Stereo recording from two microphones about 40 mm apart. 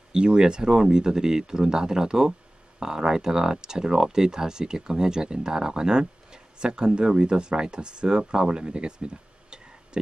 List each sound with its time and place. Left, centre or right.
0.1 s speech: right